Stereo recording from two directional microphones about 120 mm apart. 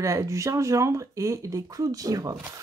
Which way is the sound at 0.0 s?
25° right (ahead or behind).